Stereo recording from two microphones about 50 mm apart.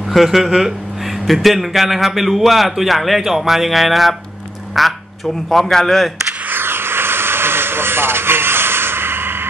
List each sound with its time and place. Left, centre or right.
0.1 s a man's voice: centre
6.5 s vehicle: right